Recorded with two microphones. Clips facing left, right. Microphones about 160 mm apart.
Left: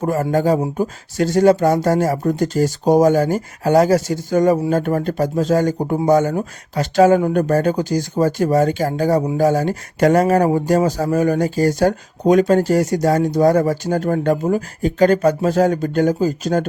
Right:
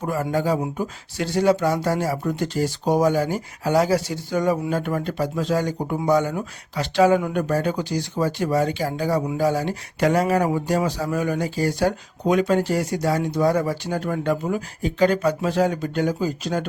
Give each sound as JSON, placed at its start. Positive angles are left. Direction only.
{"t": 0.0, "sound": "speech", "side_deg": 45}